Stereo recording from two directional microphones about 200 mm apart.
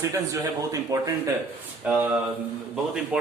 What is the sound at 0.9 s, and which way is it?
Speech, 20° right (ahead or behind).